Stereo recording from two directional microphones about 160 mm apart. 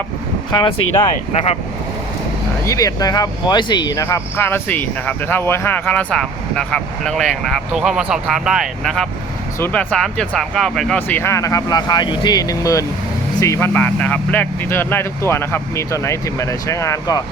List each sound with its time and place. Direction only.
0.5 s speech: 30° left (ahead or behind)
1.3 s speech: 40° left (ahead or behind)
2.6 s speech: 20° left (ahead or behind)